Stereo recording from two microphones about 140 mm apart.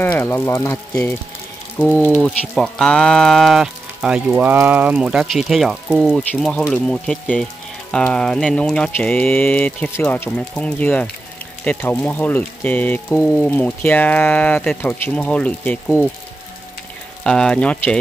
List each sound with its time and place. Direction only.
0.0 s speech: 15° left (ahead or behind)
2.4 s speech: 5° left (ahead or behind)
17.2 s speech: 5° left (ahead or behind)